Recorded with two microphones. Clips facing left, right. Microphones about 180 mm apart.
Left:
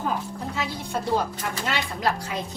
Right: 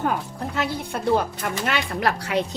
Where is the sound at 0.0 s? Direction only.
65° right (ahead or behind).